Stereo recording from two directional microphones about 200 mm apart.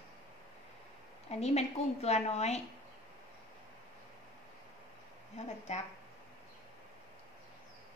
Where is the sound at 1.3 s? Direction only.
35° left (ahead or behind).